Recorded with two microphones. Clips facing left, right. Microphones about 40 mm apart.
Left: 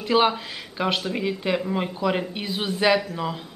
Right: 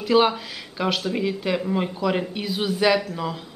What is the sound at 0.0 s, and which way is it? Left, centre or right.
Speech, centre.